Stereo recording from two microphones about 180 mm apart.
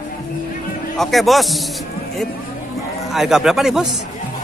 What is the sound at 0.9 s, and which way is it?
Speech, centre (ahead or behind).